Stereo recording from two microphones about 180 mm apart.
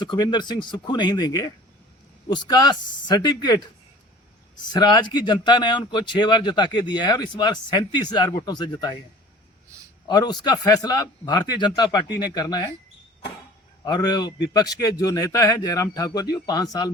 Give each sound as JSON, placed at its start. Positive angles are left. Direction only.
{"t": 0.0, "sound": "speech", "side_deg": 25}
{"t": 4.7, "sound": "speech", "side_deg": 25}
{"t": 10.1, "sound": "speech", "side_deg": 25}
{"t": 13.8, "sound": "speech", "side_deg": 25}